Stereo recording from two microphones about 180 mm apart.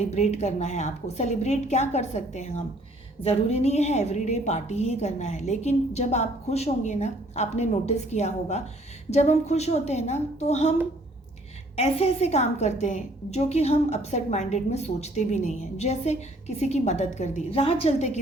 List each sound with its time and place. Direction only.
0.1 s a woman's voice: 35° left (ahead or behind)
11.8 s a woman's voice: 35° left (ahead or behind)